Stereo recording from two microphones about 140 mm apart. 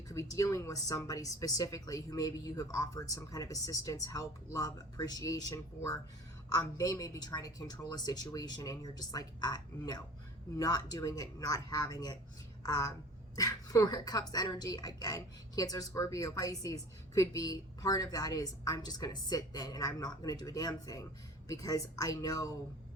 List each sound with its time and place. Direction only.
0.1 s a woman's voice: 20° left (ahead or behind)